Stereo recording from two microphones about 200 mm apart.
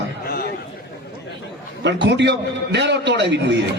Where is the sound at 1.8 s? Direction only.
60° right (ahead or behind).